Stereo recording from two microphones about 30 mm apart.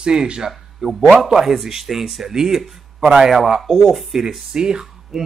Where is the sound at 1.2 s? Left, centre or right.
Centre.